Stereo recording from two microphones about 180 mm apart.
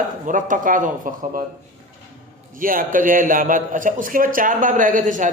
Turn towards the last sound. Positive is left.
turn(degrees=-45)  # may be behind; listen again after turning